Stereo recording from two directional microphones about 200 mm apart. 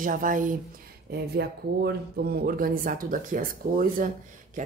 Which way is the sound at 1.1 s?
55° right (ahead or behind).